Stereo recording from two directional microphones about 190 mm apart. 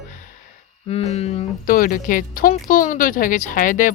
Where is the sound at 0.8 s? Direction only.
35° left (ahead or behind).